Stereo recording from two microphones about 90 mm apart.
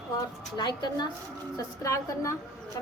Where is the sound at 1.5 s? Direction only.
35° left (ahead or behind).